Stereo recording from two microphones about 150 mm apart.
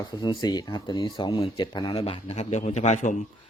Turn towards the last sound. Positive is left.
turn(degrees=55)  # may be behind; listen again after turning